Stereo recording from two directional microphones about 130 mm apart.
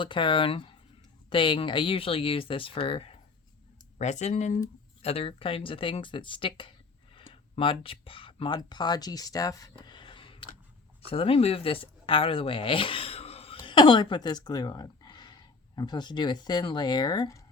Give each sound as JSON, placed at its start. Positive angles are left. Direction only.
{"t": 0.0, "sound": "speech", "side_deg": 40}
{"t": 3.9, "sound": "speech", "side_deg": 60}
{"t": 5.0, "sound": "speech", "side_deg": 45}
{"t": 13.6, "sound": "speech", "side_deg": 40}